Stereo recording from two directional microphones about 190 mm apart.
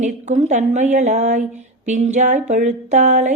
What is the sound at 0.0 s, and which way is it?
Speech, 35° right (ahead or behind).